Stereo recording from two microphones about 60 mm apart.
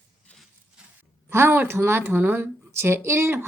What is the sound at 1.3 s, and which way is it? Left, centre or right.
Speech, right.